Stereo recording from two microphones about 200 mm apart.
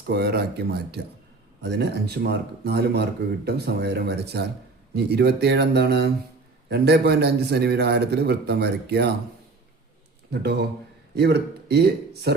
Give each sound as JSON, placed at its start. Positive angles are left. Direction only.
{"t": 0.1, "sound": "speech", "side_deg": -55}
{"t": 10.3, "sound": "speech", "side_deg": -55}